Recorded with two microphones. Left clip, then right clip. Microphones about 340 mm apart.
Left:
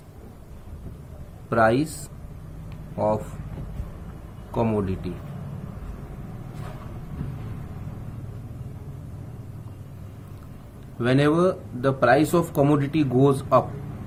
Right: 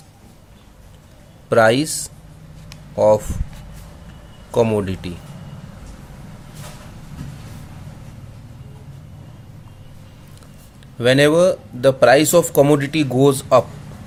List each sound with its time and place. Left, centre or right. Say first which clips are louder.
1.5 s speech: right 6 dB; right
2.6 s a sound: right 10 dB; right
4.5 s speech: right 8 dB; right
11.0 s speech: right 8 dB; right